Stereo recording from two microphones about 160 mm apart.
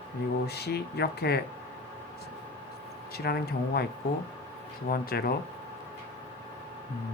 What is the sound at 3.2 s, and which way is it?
Speech, 80° left.